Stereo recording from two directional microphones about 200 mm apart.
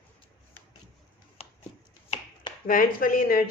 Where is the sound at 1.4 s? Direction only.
30° left (ahead or behind).